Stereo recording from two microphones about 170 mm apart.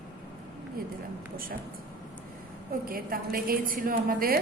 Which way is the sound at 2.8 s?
60° right (ahead or behind).